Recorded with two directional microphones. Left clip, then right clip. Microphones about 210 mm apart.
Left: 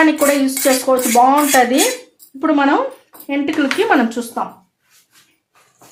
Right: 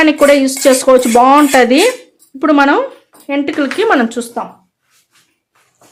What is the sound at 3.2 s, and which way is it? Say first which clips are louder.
Speech: right 2 dB; 35° right (ahead or behind).